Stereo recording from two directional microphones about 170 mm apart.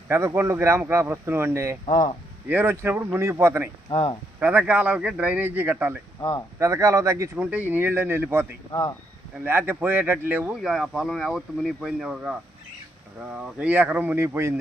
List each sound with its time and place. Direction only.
0.1 s speech: 15° right (ahead or behind)